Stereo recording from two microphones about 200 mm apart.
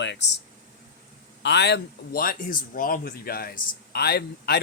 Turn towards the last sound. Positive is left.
turn(degrees=50)  # may be behind; listen again after turning